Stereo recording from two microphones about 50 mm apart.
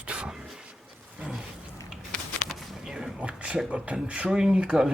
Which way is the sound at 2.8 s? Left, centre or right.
Centre.